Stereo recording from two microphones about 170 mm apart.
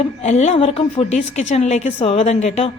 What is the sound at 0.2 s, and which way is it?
A woman's voice, 40° left (ahead or behind).